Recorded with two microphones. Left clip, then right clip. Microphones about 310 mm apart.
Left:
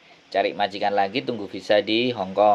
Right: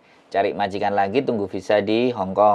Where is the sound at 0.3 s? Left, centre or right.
Right.